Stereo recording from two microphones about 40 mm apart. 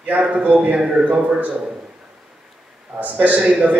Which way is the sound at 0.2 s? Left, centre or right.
Right.